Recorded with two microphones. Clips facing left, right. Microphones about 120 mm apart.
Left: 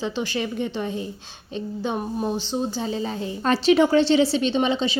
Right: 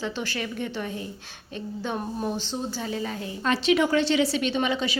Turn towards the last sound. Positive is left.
turn(degrees=25)  # may be behind; listen again after turning